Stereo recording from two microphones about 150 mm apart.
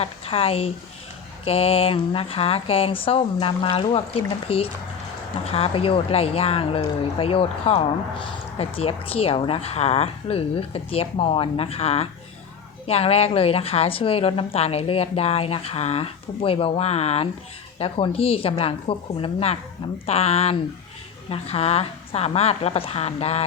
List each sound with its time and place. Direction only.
0.0 s a woman's voice: 40° left (ahead or behind)